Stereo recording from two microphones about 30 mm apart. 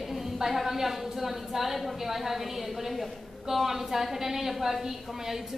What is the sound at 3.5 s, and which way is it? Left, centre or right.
A woman's voice, centre.